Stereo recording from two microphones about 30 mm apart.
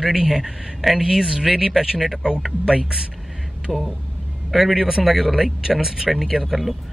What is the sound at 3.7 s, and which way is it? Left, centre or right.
Speech, centre.